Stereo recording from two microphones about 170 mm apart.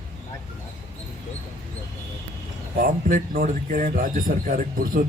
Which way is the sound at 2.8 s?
50° right (ahead or behind).